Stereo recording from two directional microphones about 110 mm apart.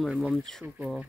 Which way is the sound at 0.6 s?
20° right (ahead or behind).